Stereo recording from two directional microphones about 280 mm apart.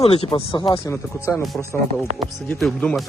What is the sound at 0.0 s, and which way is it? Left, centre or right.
Speech, left.